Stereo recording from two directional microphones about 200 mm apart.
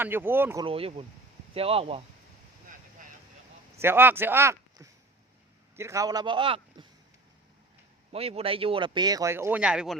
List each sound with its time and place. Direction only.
0.0 s speech: 10° right (ahead or behind)
0.6 s speech: 30° right (ahead or behind)
3.8 s speech: 10° right (ahead or behind)
8.1 s speech: 30° right (ahead or behind); by 10.0 s centre (ahead or behind)